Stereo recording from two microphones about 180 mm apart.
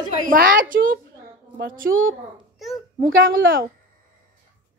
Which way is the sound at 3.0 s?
90° right.